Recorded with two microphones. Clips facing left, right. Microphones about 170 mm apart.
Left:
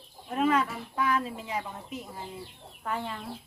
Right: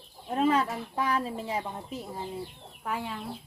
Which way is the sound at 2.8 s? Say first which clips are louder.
Even; 10° right (ahead or behind).